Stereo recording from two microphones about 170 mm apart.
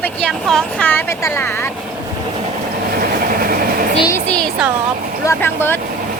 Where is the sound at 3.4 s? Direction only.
60° right (ahead or behind).